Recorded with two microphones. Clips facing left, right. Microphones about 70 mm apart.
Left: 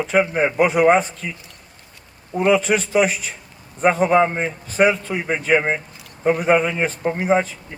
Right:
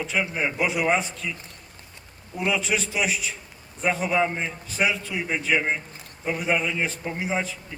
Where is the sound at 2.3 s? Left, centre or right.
Left.